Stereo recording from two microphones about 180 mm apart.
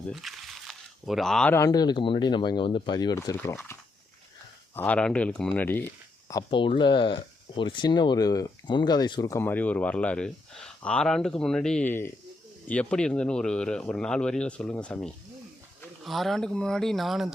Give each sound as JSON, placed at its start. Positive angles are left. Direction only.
{"t": 0.1, "sound": "a sound", "side_deg": 0}
{"t": 1.5, "sound": "speech", "side_deg": 20}
{"t": 6.2, "sound": "speech", "side_deg": 25}